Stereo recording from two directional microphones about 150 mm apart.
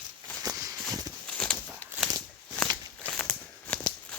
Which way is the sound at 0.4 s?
25° right (ahead or behind).